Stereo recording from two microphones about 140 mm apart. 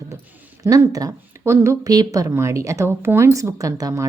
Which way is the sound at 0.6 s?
25° right (ahead or behind).